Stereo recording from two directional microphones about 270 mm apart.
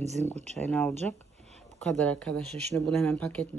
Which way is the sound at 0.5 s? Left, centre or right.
Centre.